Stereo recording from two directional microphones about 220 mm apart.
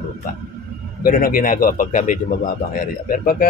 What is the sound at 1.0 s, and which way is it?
Speech, 40° left (ahead or behind).